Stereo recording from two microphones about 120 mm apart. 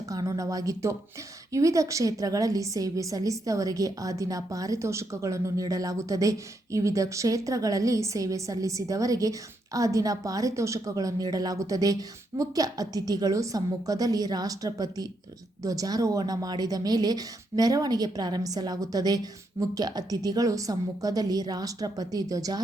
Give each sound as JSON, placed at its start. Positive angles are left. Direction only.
{"t": 0.1, "sound": "a woman's voice", "side_deg": -30}